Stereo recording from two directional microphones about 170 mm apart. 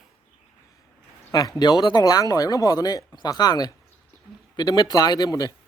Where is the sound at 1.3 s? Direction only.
25° left (ahead or behind).